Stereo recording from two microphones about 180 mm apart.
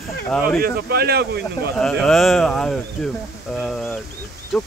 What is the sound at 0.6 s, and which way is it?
Speech, 60° right (ahead or behind).